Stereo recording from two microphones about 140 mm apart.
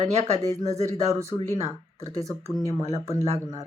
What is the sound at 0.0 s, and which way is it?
Speech, 55° right (ahead or behind).